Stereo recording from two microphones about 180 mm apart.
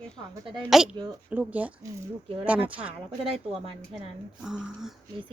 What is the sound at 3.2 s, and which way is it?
Speech, 35° right (ahead or behind).